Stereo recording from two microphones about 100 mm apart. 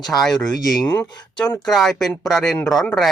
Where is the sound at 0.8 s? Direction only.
20° left (ahead or behind).